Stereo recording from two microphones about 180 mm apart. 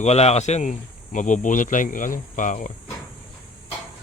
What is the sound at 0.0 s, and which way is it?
Speech, 35° left (ahead or behind).